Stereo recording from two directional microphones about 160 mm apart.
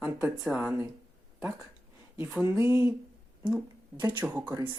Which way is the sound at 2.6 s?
15° right (ahead or behind).